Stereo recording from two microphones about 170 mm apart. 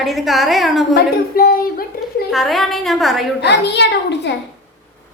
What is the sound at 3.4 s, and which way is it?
Speech, 90° left.